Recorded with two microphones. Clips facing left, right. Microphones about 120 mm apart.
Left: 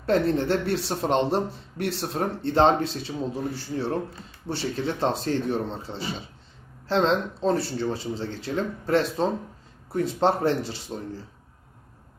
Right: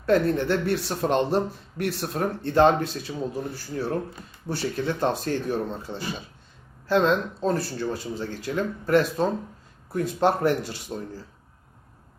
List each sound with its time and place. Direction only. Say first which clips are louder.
0.0 s speech: right 1 dB; 25° left (ahead or behind)